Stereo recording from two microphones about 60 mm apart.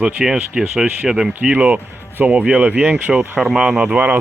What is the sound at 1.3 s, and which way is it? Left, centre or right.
Speech, right.